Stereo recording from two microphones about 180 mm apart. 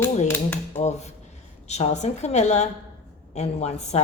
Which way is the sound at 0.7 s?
40° left (ahead or behind).